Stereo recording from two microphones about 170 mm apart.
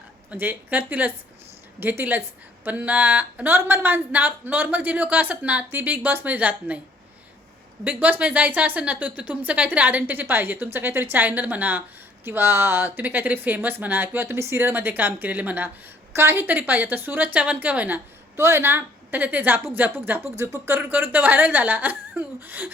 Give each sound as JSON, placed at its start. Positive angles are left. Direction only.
{"t": 0.3, "sound": "a woman's voice", "side_deg": -10}
{"t": 7.9, "sound": "a woman's voice", "side_deg": -10}